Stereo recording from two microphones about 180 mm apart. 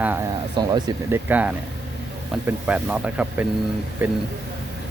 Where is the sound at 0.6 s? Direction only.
20° right (ahead or behind).